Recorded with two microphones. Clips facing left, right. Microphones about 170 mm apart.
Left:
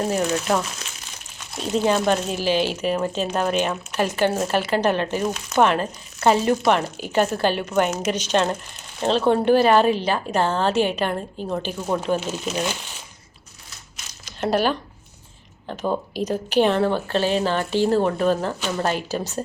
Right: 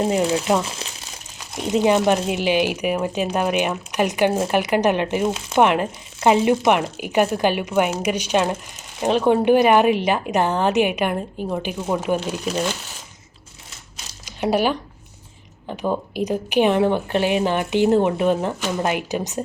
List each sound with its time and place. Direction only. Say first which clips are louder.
0.0 s a woman's voice: right 3 dB; 15° right (ahead or behind)
0.3 s speech: right 2 dB; 30° right (ahead or behind)
1.5 s a woman's voice: right 3 dB; 15° right (ahead or behind); by 12.7 s 5° left (ahead or behind)
14.3 s a woman's voice: right 1 dB; 15° right (ahead or behind)